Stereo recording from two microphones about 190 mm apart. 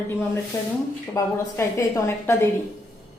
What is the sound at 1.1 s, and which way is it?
A woman's voice, 15° left (ahead or behind).